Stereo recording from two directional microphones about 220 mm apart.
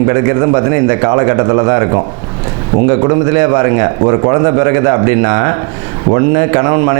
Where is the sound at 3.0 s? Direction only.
25° right (ahead or behind).